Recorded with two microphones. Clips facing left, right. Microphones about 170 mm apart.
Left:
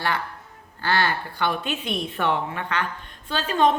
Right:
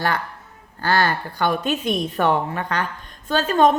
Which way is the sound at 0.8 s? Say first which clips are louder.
Right 3 dB; 40° right (ahead or behind).